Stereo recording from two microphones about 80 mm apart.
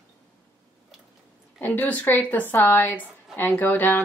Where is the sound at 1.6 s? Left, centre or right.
Left.